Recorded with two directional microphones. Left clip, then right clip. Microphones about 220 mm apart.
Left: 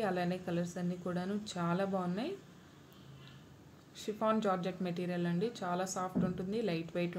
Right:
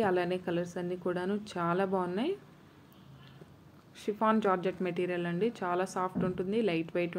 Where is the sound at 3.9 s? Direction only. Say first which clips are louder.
Right 4 dB; 15° right (ahead or behind).